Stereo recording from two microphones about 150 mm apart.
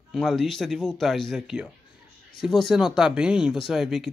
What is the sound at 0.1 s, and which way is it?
Speech, centre (ahead or behind).